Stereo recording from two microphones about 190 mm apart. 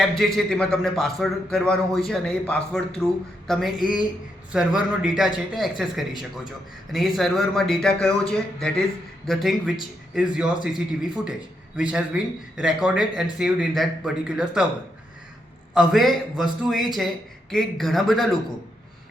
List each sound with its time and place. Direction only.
0.3 s speech: 5° left (ahead or behind)
3.4 s a sound: centre (ahead or behind)
4.5 s speech: 5° right (ahead or behind)
15.7 s speech: centre (ahead or behind)